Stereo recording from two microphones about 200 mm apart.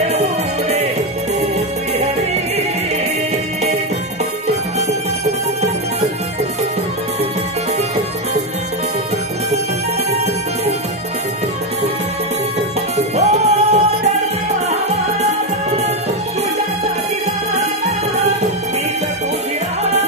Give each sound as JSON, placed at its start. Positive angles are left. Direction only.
{"t": 0.1, "sound": "music", "side_deg": -30}
{"t": 10.1, "sound": "music", "side_deg": -35}
{"t": 12.9, "sound": "music", "side_deg": -35}